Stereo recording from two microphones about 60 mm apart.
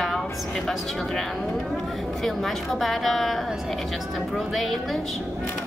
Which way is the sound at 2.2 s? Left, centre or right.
Centre.